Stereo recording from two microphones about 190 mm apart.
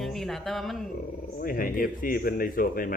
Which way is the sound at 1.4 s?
50° left (ahead or behind).